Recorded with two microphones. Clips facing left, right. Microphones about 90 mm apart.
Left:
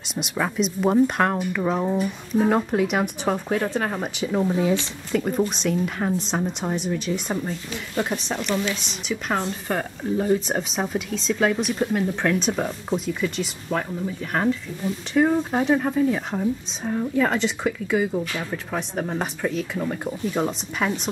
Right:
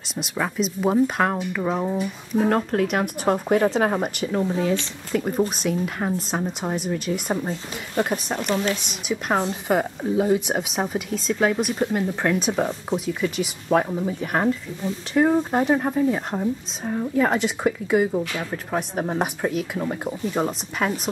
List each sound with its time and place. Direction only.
0.1 s speech: centre (ahead or behind)
5.1 s speech: centre (ahead or behind)
8.4 s a woman's voice: 45° right (ahead or behind)
9.1 s speech: 10° right (ahead or behind)
13.7 s speech: 25° right (ahead or behind)
14.2 s speech: 10° right (ahead or behind)